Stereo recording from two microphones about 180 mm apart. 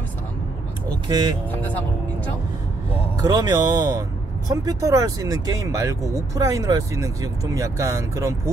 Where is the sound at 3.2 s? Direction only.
20° right (ahead or behind).